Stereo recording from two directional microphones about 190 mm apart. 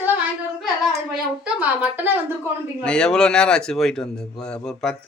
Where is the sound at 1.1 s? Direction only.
5° right (ahead or behind).